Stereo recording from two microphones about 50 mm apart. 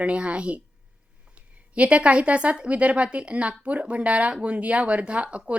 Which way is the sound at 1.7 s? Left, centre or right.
Right.